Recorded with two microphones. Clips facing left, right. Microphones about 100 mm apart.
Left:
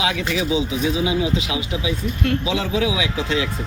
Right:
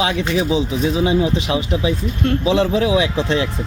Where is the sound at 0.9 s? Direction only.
40° right (ahead or behind).